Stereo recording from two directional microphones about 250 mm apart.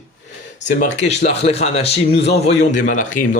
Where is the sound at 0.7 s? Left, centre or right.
Left.